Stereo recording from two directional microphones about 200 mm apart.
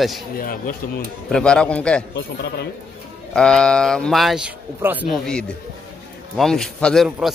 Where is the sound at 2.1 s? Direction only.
55° left (ahead or behind).